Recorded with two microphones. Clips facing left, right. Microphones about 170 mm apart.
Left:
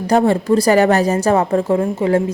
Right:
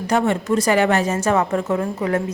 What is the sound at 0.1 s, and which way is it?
A woman's voice, 35° left (ahead or behind).